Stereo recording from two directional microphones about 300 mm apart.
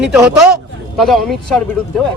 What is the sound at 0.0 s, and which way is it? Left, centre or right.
A man's voice, centre.